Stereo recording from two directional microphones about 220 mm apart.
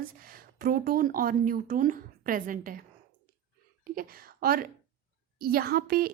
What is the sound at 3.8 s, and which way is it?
A woman's voice, 40° right (ahead or behind).